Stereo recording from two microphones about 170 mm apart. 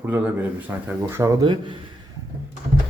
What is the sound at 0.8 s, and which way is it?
Speech, 15° right (ahead or behind).